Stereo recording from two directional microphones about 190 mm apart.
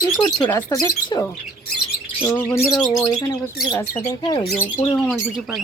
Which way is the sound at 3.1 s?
15° left (ahead or behind).